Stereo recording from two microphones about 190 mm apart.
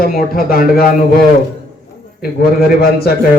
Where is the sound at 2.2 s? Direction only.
50° left (ahead or behind).